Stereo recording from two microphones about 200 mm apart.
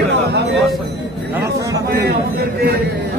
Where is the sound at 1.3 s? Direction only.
15° right (ahead or behind).